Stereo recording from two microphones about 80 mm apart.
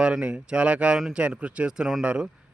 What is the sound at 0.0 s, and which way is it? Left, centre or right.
Speech, centre.